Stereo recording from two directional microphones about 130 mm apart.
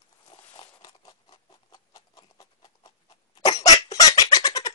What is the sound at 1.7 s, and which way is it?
Horse, 30° left (ahead or behind).